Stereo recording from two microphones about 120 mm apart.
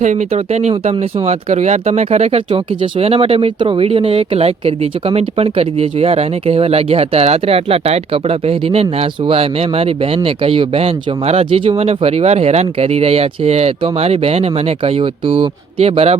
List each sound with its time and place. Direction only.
0.0 s speech: 80° right; by 16.1 s 55° right (ahead or behind)